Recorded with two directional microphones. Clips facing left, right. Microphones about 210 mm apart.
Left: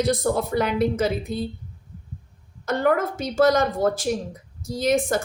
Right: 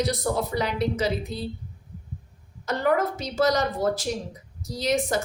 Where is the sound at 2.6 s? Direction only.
50° left (ahead or behind).